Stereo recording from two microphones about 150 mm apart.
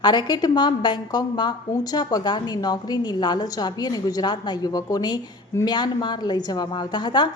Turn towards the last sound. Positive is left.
turn(degrees=30)  # may be behind; listen again after turning